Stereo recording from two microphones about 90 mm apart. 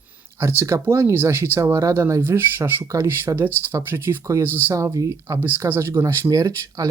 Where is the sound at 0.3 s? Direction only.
30° right (ahead or behind).